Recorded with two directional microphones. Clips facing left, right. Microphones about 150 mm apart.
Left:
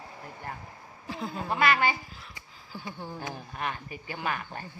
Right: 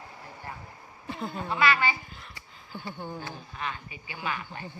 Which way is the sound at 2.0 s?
Centre (ahead or behind).